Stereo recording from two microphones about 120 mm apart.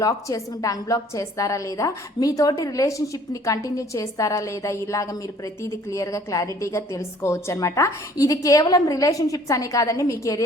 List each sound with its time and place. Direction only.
0.0 s a woman's voice: 25° left (ahead or behind)